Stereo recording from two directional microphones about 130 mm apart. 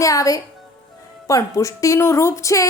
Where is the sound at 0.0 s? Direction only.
25° left (ahead or behind).